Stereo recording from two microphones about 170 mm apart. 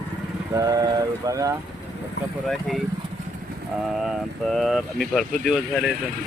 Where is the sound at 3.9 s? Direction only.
Centre (ahead or behind).